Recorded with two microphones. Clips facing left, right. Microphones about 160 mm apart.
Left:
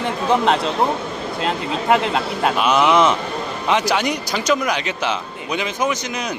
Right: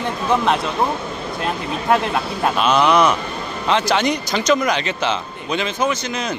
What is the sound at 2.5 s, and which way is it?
A man's voice, 15° left (ahead or behind).